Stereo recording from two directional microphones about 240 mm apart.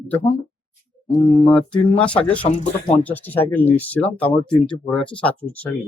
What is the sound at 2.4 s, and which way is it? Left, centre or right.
Speech, left.